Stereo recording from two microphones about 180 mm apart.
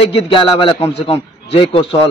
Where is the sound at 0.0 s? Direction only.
30° left (ahead or behind).